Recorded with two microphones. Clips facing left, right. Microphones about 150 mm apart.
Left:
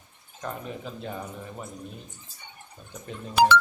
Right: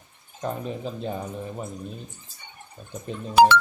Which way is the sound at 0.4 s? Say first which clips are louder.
Right 5 dB; 25° right (ahead or behind).